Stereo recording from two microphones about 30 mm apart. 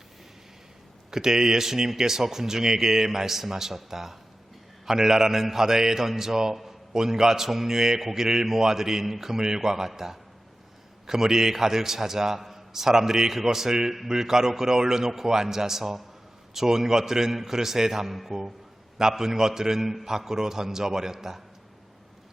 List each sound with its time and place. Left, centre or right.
1.1 s a man's voice: centre
18.9 s a man's voice: centre